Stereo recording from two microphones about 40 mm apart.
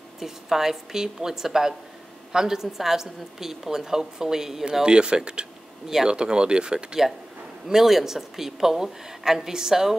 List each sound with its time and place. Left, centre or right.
0.2 s a woman's voice: centre
4.8 s speech: right
7.6 s a woman's voice: centre